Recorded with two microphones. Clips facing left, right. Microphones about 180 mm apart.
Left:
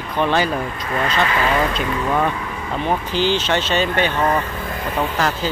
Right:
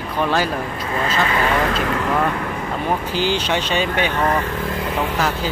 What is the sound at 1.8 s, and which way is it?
Speech, 90° right.